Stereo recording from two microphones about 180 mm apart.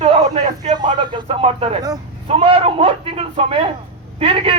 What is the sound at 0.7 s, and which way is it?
Speech, 25° right (ahead or behind).